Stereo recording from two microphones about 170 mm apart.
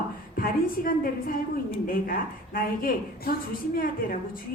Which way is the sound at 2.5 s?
55° left (ahead or behind).